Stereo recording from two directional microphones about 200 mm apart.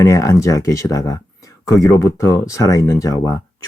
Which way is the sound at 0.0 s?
15° left (ahead or behind).